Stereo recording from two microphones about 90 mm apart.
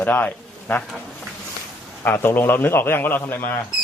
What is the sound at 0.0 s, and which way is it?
Speech, 20° left (ahead or behind).